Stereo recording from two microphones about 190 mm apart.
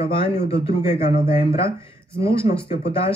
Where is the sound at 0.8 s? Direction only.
35° left (ahead or behind).